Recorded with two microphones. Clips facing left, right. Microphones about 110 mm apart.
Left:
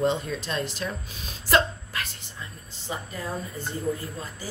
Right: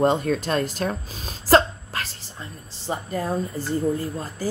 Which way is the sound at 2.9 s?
45° right (ahead or behind).